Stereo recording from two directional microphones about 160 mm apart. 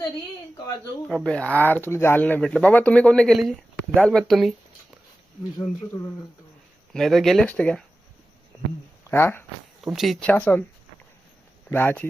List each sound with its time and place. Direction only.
1.2 s speech: 5° left (ahead or behind)
5.5 s speech: 20° left (ahead or behind)
6.9 s speech: centre (ahead or behind)
9.0 s speech: 15° left (ahead or behind)
9.8 s speech: centre (ahead or behind)
11.7 s speech: 10° left (ahead or behind)